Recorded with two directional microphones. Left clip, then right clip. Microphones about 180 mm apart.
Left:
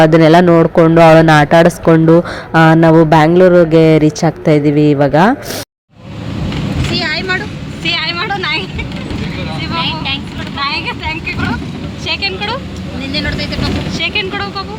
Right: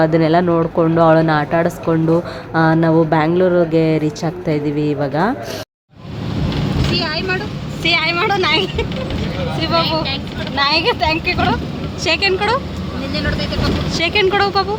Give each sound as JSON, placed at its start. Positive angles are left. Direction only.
{"t": 0.0, "sound": "speech", "side_deg": 35}
{"t": 6.9, "sound": "vehicle", "side_deg": 0}
{"t": 7.9, "sound": "vehicle", "side_deg": -40}
{"t": 10.6, "sound": "speech", "side_deg": -65}
{"t": 12.0, "sound": "speech", "side_deg": -45}
{"t": 13.1, "sound": "speech", "side_deg": 0}
{"t": 13.9, "sound": "speech", "side_deg": -40}